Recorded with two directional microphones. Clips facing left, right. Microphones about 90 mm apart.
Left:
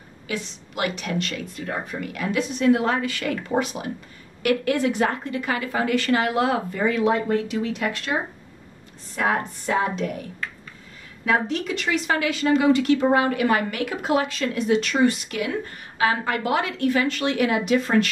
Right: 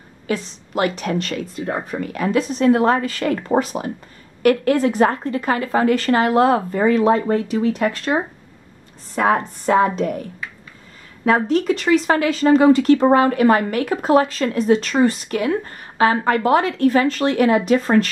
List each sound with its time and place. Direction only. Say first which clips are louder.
0.3 s speech: right 7 dB; 40° right (ahead or behind)
11.2 s speech: right 6 dB; 40° right (ahead or behind)